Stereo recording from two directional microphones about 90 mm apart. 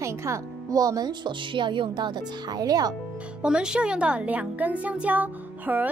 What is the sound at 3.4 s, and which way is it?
Speech, 10° right (ahead or behind).